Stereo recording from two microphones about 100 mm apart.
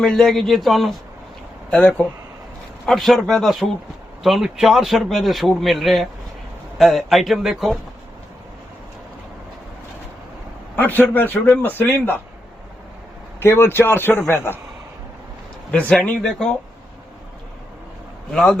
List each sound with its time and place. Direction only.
0.0 s a man's voice: 5° left (ahead or behind)
10.8 s a man's voice: 20° left (ahead or behind)
13.4 s a man's voice: 25° left (ahead or behind)
15.7 s a man's voice: 15° left (ahead or behind)
18.3 s a man's voice: 5° left (ahead or behind)